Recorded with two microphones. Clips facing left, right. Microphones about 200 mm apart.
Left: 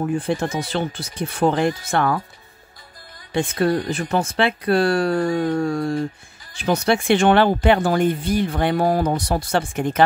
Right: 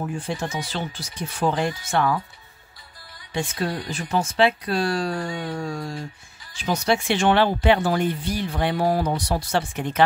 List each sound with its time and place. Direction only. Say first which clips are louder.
0.0 s speech: left 6 dB; 55° left (ahead or behind)
3.3 s speech: left 7 dB; 55° left (ahead or behind)